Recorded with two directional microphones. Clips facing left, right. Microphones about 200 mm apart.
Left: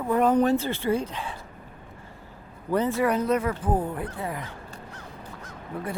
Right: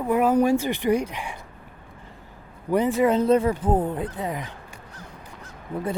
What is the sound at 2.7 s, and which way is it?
Speech, 15° right (ahead or behind).